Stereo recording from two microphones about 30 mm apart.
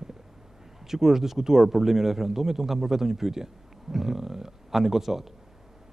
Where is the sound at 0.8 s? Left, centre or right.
Centre.